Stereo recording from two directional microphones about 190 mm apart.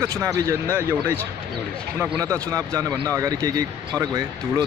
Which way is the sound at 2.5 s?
20° right (ahead or behind).